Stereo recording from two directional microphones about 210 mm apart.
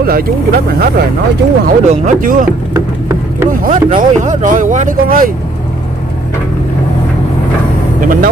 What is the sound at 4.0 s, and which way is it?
Speech, 35° right (ahead or behind).